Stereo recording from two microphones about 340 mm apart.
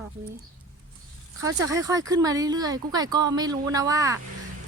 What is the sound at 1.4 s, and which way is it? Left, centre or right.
Speech, centre.